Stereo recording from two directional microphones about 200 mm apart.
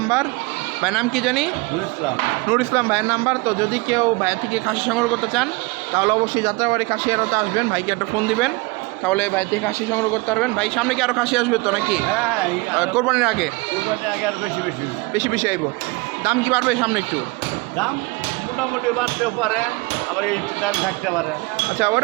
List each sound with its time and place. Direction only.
0.8 s a man's voice: centre (ahead or behind)
2.5 s speech: 10° right (ahead or behind)
6.0 s speech: 15° right (ahead or behind)
8.3 s a man's voice: centre (ahead or behind)
15.1 s speech: 10° right (ahead or behind)
21.8 s speech: 10° right (ahead or behind)